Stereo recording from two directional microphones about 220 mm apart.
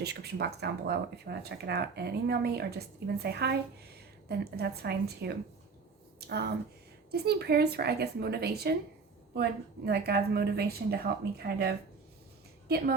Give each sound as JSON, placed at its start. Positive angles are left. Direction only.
{"t": 0.0, "sound": "a woman's voice", "side_deg": -50}